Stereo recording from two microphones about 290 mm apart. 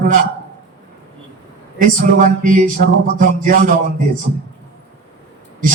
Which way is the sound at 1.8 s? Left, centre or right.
Right.